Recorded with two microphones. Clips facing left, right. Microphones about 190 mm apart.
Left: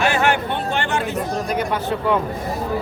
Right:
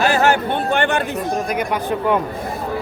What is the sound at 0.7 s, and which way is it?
Speech, 55° right (ahead or behind).